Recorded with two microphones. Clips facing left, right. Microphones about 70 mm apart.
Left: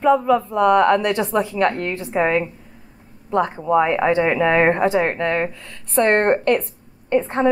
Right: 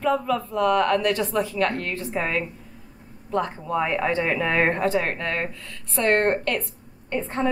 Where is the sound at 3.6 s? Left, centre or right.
Left.